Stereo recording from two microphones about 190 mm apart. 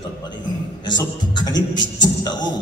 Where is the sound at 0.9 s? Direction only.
20° left (ahead or behind).